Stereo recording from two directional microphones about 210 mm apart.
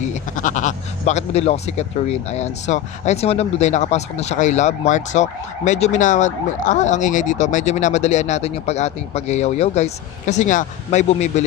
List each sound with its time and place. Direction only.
0.0 s speech: 35° left (ahead or behind)